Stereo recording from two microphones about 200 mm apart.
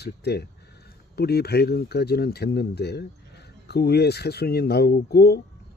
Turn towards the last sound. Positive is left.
turn(degrees=50)  # may be behind; listen again after turning